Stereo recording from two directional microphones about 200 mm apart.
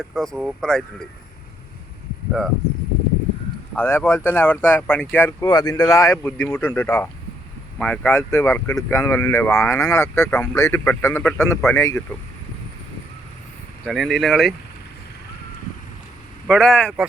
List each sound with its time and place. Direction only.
0.0 s speech: centre (ahead or behind)
3.8 s speech: 10° left (ahead or behind)
13.8 s speech: centre (ahead or behind)
16.5 s speech: 5° left (ahead or behind)